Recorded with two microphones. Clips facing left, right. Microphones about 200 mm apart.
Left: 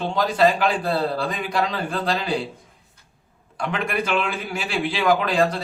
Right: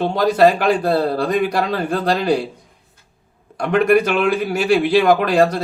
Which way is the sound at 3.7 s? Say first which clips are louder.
Right 10 dB; 55° right (ahead or behind).